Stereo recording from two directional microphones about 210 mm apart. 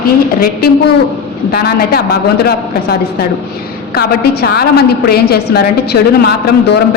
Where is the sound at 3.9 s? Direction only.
45° left (ahead or behind).